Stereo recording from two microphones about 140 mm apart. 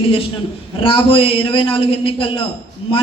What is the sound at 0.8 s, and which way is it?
A man's voice, 40° left (ahead or behind).